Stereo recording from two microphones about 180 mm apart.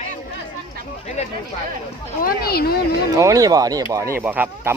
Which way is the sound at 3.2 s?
20° right (ahead or behind).